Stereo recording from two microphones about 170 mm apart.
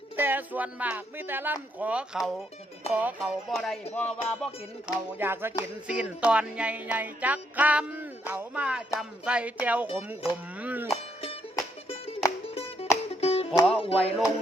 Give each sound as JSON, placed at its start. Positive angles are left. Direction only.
{"t": 0.2, "sound": "speech", "side_deg": -10}
{"t": 3.5, "sound": "music", "side_deg": 0}
{"t": 5.2, "sound": "speech", "side_deg": -15}
{"t": 10.1, "sound": "a sound", "side_deg": -10}
{"t": 13.2, "sound": "music", "side_deg": 35}